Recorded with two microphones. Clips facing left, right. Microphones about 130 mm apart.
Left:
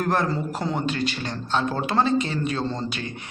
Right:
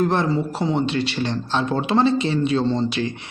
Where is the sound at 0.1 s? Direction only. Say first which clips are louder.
Right 3 dB; 25° right (ahead or behind).